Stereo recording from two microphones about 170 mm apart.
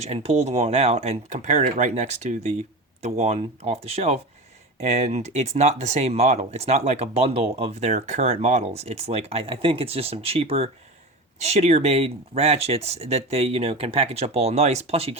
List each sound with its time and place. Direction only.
0.0 s speech: 35° right (ahead or behind)